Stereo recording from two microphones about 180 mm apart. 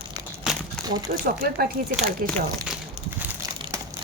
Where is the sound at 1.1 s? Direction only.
60° right (ahead or behind).